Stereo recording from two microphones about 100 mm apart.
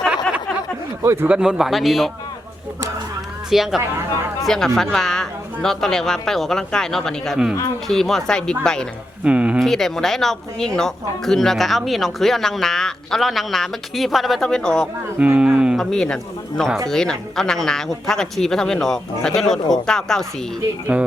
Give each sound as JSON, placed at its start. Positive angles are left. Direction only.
{"t": 1.0, "sound": "speech", "side_deg": -25}
{"t": 1.3, "sound": "speech", "side_deg": -5}
{"t": 3.5, "sound": "a man's voice", "side_deg": 0}
{"t": 9.2, "sound": "speech", "side_deg": -10}
{"t": 9.6, "sound": "speech", "side_deg": 5}
{"t": 15.2, "sound": "speech", "side_deg": -10}
{"t": 15.8, "sound": "speech", "side_deg": 5}
{"t": 20.9, "sound": "speech", "side_deg": -10}